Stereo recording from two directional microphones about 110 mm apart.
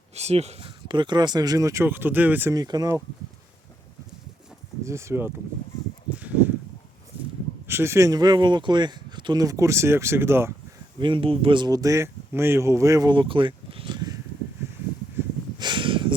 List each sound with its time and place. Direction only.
0.1 s speech: 75° right (ahead or behind)
0.9 s speech: 45° right (ahead or behind); by 2.5 s 15° right (ahead or behind)
2.5 s speech: 35° right (ahead or behind)
4.8 s speech: 25° right (ahead or behind)
7.7 s speech: 25° right (ahead or behind)
11.0 s speech: 50° right (ahead or behind); by 13.1 s 30° right (ahead or behind)
13.1 s a sound: 50° right (ahead or behind)
15.5 s a sound: 45° right (ahead or behind)